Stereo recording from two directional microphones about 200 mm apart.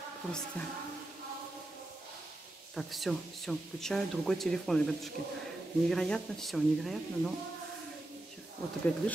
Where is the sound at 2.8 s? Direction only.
Centre (ahead or behind).